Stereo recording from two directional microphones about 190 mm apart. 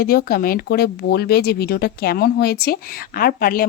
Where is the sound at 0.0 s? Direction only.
50° left (ahead or behind).